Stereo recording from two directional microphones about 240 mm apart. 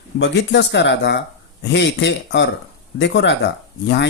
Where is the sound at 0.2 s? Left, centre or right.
Left.